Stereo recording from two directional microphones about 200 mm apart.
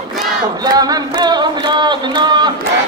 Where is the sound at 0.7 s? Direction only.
20° right (ahead or behind).